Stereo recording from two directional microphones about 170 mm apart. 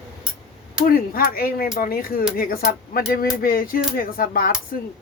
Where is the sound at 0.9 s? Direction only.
60° left (ahead or behind).